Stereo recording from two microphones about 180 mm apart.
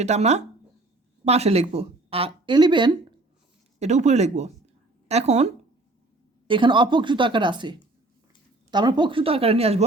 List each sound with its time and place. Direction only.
0.0 s speech: 40° right (ahead or behind)
3.8 s speech: 40° right (ahead or behind)
6.5 s a woman's voice: 25° right (ahead or behind)